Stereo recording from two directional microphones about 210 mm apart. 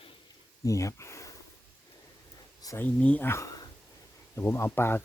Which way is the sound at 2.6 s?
15° left (ahead or behind).